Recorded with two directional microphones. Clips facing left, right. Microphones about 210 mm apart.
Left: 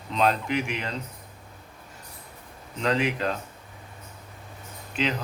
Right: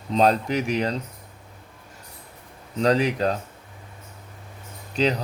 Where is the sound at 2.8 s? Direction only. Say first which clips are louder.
Right 5 dB; 35° right (ahead or behind).